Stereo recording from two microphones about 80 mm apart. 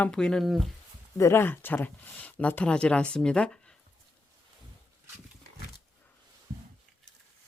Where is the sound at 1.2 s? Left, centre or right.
Left; by 3.8 s centre.